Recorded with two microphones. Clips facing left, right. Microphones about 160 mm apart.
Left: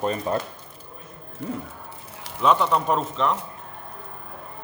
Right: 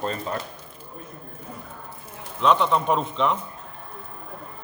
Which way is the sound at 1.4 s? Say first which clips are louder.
Left 12 dB; 80° left.